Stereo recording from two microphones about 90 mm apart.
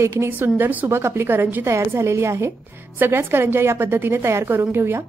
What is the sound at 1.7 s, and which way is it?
A woman's voice, 35° right (ahead or behind).